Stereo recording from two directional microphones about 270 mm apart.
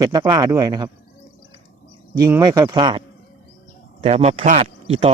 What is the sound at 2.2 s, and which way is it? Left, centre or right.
Speech, centre.